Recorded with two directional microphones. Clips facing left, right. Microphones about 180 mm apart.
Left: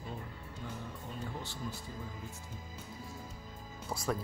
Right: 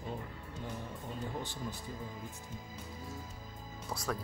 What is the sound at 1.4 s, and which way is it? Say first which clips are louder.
Speech: right 2 dB; 15° right (ahead or behind).